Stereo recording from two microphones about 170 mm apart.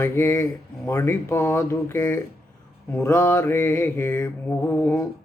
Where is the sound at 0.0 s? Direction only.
15° left (ahead or behind).